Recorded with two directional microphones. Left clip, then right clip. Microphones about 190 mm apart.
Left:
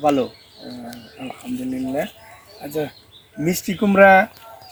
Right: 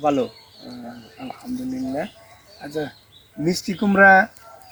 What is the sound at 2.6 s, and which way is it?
Speech, 20° left (ahead or behind).